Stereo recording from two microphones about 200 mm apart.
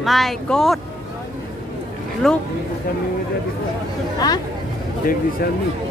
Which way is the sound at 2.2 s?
Centre (ahead or behind).